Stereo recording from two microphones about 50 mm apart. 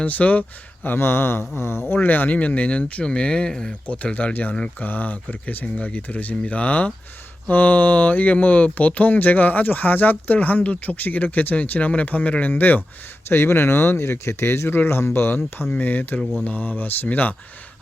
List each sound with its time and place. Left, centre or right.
0.0 s speech: left
0.9 s mantra: left
1.9 s speech: left; by 3.8 s centre
3.8 s speech: left
13.2 s speech: left
14.8 s mantra: left
15.7 s speech: left